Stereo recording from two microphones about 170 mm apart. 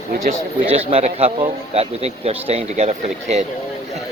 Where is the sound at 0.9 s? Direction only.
35° right (ahead or behind).